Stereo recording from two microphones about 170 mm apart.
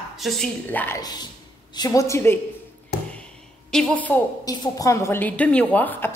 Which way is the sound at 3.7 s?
5° left (ahead or behind).